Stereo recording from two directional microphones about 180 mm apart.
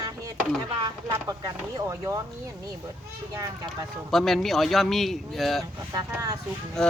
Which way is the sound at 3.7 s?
Centre (ahead or behind).